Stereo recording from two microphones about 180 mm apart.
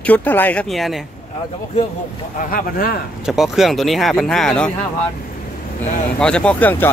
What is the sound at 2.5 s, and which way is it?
Speech, 50° left (ahead or behind).